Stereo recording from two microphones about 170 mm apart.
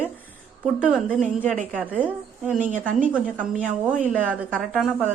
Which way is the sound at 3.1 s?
5° right (ahead or behind).